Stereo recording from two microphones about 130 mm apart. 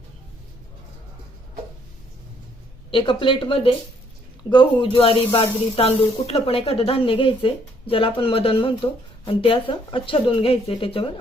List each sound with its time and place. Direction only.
2.9 s speech: 40° left (ahead or behind)